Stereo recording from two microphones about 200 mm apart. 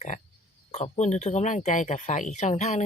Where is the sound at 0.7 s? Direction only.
35° left (ahead or behind).